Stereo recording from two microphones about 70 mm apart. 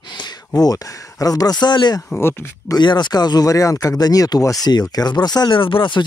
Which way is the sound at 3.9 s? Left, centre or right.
Left.